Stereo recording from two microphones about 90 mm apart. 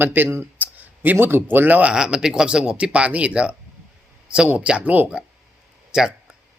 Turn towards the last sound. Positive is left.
turn(degrees=-5)  # may be behind; listen again after turning